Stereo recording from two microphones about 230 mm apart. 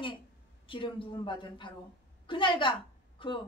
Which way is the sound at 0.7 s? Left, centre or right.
Left.